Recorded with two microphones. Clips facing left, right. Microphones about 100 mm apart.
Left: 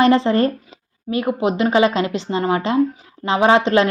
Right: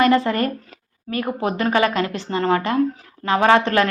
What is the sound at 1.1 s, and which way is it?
A woman's voice, 20° left (ahead or behind).